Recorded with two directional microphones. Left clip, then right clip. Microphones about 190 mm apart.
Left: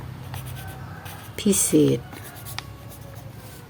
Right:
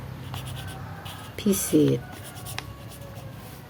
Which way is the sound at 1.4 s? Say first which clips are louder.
Left 3 dB; 25° left (ahead or behind).